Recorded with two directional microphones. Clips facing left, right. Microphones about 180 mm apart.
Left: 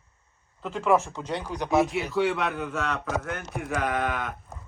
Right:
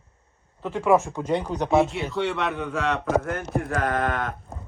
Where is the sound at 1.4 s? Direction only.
60° right (ahead or behind).